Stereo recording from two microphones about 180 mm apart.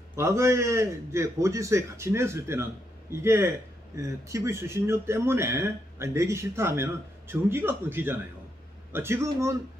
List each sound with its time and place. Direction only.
0.1 s a man's voice: 15° right (ahead or behind)